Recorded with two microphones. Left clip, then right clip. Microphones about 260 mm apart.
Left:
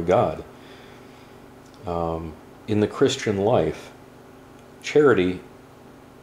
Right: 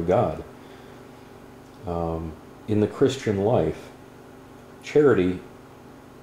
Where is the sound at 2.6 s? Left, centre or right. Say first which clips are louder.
Left 1 dB; centre.